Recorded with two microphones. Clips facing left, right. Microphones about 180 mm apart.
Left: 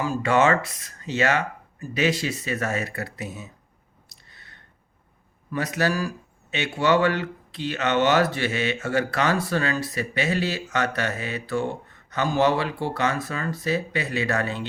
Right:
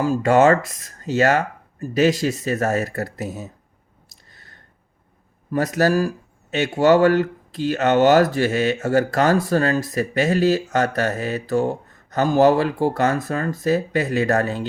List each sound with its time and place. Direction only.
0.0 s speech: 40° right (ahead or behind)
4.3 s a sound: 45° right (ahead or behind)
5.5 s speech: 45° right (ahead or behind)